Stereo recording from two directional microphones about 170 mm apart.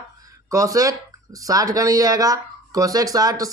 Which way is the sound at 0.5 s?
20° right (ahead or behind).